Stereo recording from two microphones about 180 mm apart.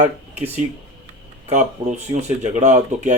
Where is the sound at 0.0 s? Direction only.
40° right (ahead or behind).